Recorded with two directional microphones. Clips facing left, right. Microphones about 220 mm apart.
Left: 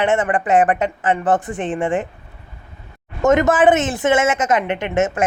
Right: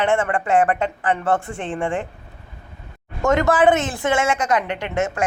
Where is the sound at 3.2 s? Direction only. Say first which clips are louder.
Left 3 dB; 20° left (ahead or behind).